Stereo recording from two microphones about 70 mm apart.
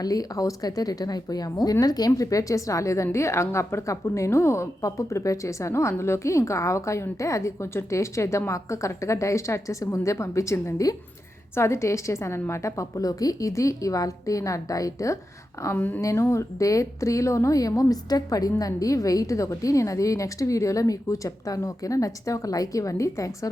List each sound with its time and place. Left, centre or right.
0.0 s a woman's voice: left
15.7 s speech: left
16.0 s a woman's voice: left